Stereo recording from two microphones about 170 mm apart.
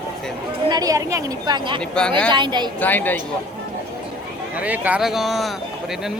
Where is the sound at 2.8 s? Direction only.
10° left (ahead or behind).